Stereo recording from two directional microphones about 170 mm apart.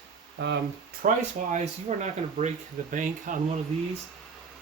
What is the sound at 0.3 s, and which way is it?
Speech, 90° right.